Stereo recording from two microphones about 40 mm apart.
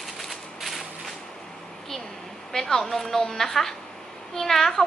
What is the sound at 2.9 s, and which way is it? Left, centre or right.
A woman's voice, centre.